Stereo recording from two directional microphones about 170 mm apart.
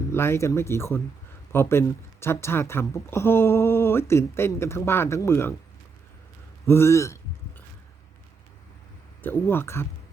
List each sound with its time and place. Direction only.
0.1 s a woman's voice: 15° left (ahead or behind)
6.7 s a woman's voice: 15° left (ahead or behind)
9.2 s a woman's voice: 15° left (ahead or behind)